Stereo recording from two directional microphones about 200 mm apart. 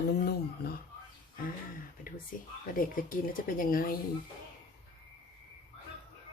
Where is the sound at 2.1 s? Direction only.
45° left (ahead or behind).